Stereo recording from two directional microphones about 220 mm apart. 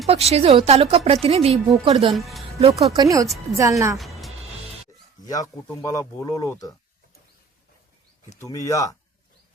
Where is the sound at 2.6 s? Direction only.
30° right (ahead or behind).